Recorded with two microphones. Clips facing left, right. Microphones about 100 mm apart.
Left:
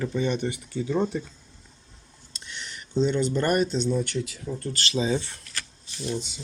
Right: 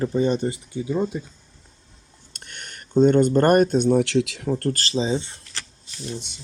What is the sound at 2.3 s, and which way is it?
Speech, 55° right (ahead or behind).